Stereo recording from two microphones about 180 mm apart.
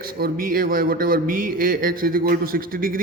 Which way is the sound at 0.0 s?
55° right (ahead or behind).